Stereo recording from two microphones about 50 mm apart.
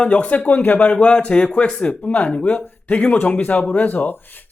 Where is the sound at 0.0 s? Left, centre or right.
Left.